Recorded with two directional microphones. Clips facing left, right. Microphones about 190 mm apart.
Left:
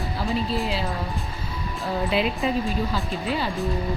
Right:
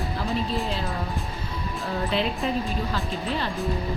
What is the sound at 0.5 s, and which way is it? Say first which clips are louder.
Speech: left 2 dB; centre (ahead or behind).